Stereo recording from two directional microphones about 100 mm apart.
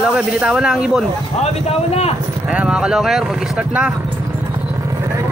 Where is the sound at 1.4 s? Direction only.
90° left.